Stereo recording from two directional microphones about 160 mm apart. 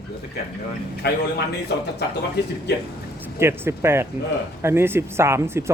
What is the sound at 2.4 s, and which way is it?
Speech, 90° left.